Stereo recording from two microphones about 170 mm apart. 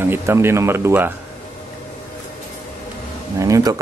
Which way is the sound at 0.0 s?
15° right (ahead or behind).